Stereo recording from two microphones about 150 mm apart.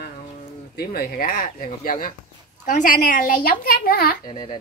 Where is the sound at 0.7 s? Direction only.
85° left.